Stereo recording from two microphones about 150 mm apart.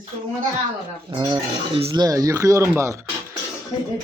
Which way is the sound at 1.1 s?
30° right (ahead or behind).